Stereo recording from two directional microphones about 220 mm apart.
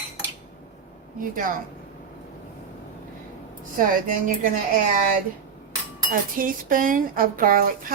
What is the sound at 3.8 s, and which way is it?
Speech, 40° right (ahead or behind).